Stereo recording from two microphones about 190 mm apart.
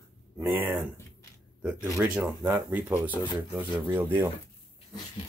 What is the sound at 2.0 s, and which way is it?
Speech, 10° right (ahead or behind).